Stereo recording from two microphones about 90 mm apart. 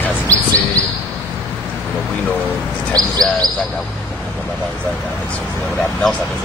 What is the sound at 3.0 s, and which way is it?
Bird, 45° right (ahead or behind).